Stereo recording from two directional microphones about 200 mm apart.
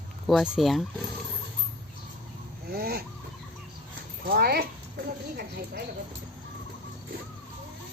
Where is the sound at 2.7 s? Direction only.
50° right (ahead or behind).